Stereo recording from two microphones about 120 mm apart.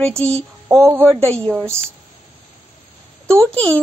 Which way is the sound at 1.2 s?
10° left (ahead or behind).